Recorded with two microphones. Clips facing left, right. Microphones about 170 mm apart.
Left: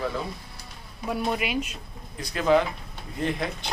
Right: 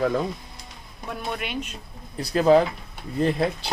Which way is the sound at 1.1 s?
5° left (ahead or behind).